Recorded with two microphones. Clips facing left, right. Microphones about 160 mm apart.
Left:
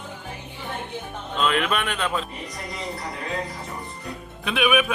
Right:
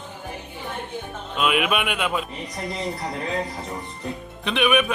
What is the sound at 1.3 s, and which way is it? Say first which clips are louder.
Speech: right 1 dB; 10° right (ahead or behind).